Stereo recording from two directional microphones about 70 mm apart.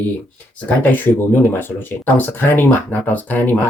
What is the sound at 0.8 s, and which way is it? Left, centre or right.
Speech, left.